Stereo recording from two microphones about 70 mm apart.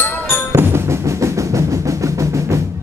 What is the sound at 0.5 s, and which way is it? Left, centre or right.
Drum, right.